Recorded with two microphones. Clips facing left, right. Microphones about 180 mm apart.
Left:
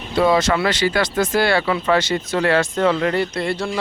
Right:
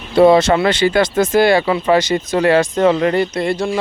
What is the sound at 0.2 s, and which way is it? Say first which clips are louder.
Speech: right 6 dB; 25° right (ahead or behind).